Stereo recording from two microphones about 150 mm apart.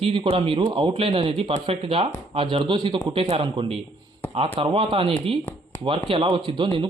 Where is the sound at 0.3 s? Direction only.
35° right (ahead or behind).